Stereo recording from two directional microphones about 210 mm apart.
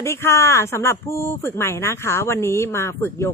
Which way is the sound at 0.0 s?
15° left (ahead or behind).